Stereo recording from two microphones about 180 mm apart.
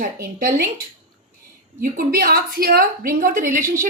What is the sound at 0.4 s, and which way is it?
Speech, 60° right (ahead or behind).